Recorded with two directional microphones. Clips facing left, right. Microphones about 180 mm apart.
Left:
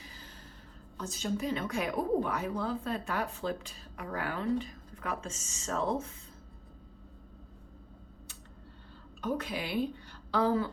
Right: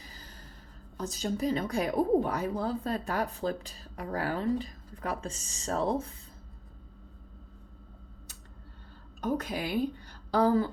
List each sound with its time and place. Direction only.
0.0 s a sound: 40° right (ahead or behind)
0.9 s speech: 35° right (ahead or behind)
9.2 s a woman's voice: 45° right (ahead or behind)